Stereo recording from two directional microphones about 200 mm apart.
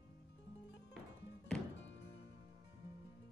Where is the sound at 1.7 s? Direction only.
65° left (ahead or behind).